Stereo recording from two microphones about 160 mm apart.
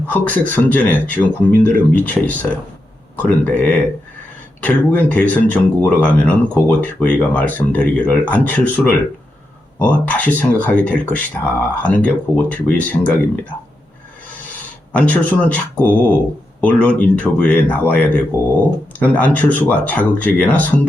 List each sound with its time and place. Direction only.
0.1 s speech: 10° left (ahead or behind)
14.9 s speech: 10° left (ahead or behind)